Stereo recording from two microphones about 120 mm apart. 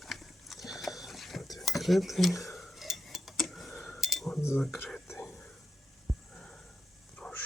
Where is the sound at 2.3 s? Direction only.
25° left (ahead or behind).